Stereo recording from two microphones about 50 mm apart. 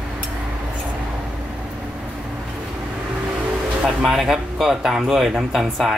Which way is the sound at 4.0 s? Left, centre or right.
Centre.